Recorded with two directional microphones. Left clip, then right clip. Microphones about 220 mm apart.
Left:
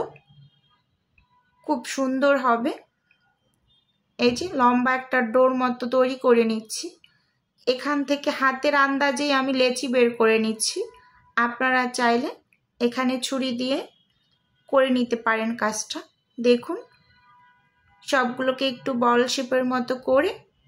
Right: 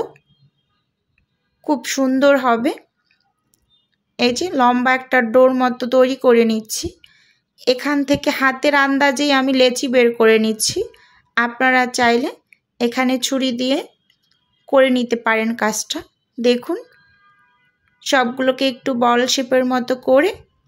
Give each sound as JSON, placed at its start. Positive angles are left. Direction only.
{"t": 1.6, "sound": "a woman's voice", "side_deg": -35}
{"t": 4.2, "sound": "a woman's voice", "side_deg": -35}
{"t": 18.0, "sound": "a woman's voice", "side_deg": -35}